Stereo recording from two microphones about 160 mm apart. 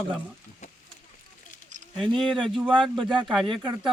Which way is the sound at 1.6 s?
50° right (ahead or behind).